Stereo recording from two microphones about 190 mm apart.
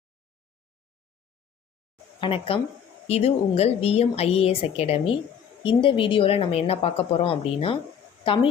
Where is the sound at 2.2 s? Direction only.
30° left (ahead or behind).